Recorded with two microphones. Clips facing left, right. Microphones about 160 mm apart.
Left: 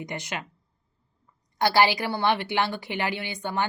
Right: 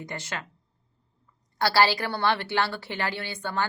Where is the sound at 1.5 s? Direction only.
15° left (ahead or behind).